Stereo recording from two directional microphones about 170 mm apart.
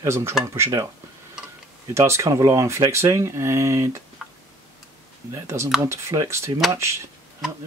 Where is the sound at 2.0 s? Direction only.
15° right (ahead or behind).